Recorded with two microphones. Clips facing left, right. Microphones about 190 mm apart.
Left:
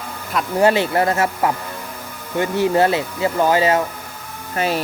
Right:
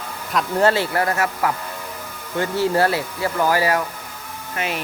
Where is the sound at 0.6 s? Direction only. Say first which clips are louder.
Left 4 dB; 20° left (ahead or behind).